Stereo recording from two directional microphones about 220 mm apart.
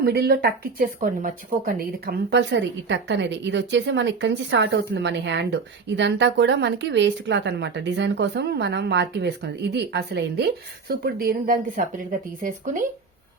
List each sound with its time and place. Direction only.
0.0 s a woman's voice: 45° right (ahead or behind)